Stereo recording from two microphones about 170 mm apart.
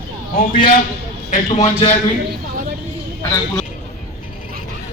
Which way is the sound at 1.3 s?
40° left (ahead or behind).